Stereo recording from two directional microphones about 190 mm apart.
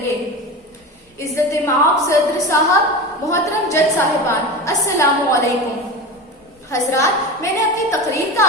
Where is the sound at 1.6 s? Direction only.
15° left (ahead or behind).